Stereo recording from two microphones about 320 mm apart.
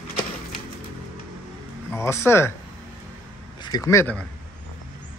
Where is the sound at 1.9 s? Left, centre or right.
Centre.